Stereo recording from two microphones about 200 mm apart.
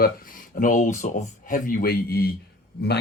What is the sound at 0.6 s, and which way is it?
A man's voice, 40° left (ahead or behind).